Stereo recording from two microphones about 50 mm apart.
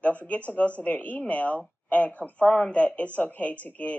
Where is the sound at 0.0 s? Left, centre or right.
Left.